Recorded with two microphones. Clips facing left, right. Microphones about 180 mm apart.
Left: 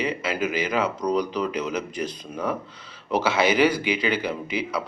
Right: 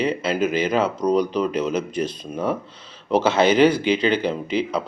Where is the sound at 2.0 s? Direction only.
25° right (ahead or behind).